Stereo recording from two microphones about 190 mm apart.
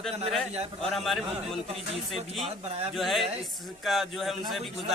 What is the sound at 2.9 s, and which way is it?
A man's voice, centre (ahead or behind).